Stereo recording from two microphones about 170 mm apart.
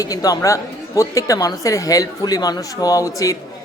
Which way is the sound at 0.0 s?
20° left (ahead or behind).